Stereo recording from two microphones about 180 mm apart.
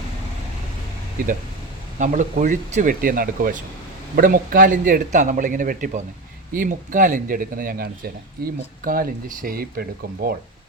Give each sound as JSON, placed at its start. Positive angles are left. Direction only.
{"t": 2.0, "sound": "speech", "side_deg": -45}